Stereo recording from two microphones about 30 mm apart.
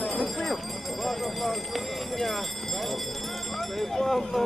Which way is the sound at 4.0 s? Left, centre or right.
Centre.